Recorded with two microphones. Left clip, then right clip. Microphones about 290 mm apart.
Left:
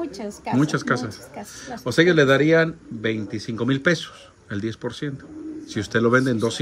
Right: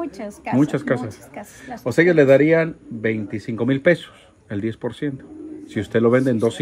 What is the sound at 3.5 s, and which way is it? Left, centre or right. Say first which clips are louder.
Speech: right 4 dB; centre.